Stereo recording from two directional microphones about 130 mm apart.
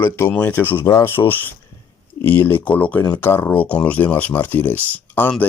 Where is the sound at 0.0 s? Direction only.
15° left (ahead or behind).